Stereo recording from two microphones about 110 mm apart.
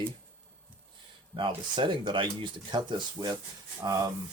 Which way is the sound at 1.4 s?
50° right (ahead or behind).